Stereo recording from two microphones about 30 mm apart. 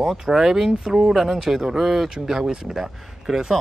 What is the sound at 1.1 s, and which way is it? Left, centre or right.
Speech, centre.